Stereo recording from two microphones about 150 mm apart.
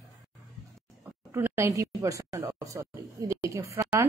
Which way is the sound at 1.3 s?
15° right (ahead or behind).